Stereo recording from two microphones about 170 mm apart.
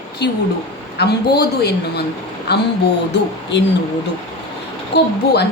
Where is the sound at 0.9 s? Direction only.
75° left (ahead or behind).